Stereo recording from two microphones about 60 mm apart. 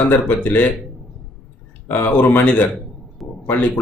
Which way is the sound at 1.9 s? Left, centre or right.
Left.